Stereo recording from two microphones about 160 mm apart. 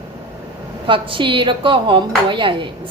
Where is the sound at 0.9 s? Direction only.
35° right (ahead or behind).